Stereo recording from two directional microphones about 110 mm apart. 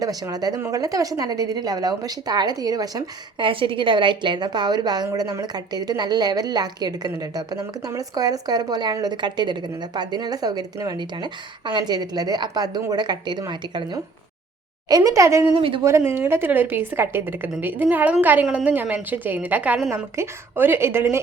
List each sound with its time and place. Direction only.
0.0 s a woman's voice: 35° right (ahead or behind)
3.4 s a woman's voice: 50° right (ahead or behind); by 21.2 s 25° right (ahead or behind)